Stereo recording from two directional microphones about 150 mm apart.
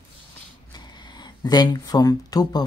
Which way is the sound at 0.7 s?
30° left (ahead or behind).